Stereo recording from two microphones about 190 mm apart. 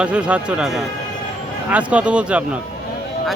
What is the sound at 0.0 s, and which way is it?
Speech, 5° right (ahead or behind).